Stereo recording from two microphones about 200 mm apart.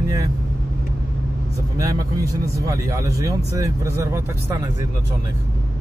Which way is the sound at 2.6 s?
15° right (ahead or behind).